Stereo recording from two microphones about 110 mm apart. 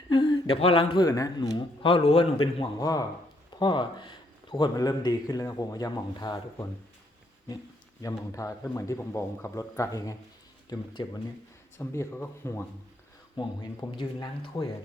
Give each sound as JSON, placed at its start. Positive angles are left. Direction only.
{"t": 0.1, "sound": "a sound", "side_deg": 45}
{"t": 0.9, "sound": "speech", "side_deg": 35}
{"t": 1.4, "sound": "a man's voice", "side_deg": 45}
{"t": 2.7, "sound": "speech", "side_deg": 35}
{"t": 3.6, "sound": "speech", "side_deg": 45}
{"t": 8.0, "sound": "a man's voice", "side_deg": 30}
{"t": 11.8, "sound": "a man's voice", "side_deg": 20}
{"t": 13.3, "sound": "a man's voice", "side_deg": 40}